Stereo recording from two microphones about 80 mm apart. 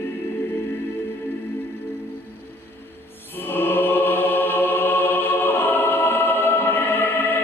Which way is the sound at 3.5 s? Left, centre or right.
Left.